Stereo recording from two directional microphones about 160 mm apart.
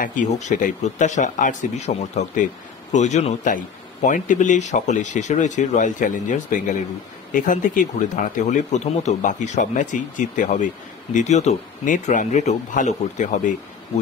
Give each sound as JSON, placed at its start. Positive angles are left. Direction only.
{"t": 0.0, "sound": "speech", "side_deg": 50}
{"t": 8.5, "sound": "speech", "side_deg": 45}